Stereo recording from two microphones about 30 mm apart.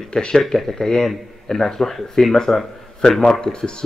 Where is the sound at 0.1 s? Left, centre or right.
Left.